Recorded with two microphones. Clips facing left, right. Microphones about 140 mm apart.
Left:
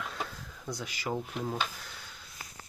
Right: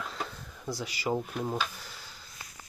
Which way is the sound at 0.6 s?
5° right (ahead or behind).